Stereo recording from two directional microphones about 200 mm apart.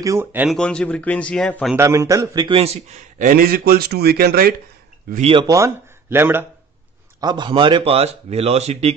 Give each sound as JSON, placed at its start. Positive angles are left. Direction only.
{"t": 0.0, "sound": "speech", "side_deg": -15}
{"t": 0.6, "sound": "a man's voice", "side_deg": 5}
{"t": 1.8, "sound": "a man's voice", "side_deg": -15}
{"t": 5.1, "sound": "speech", "side_deg": -30}
{"t": 7.2, "sound": "speech", "side_deg": -20}